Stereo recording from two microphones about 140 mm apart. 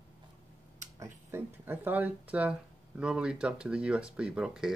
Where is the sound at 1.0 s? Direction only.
15° right (ahead or behind).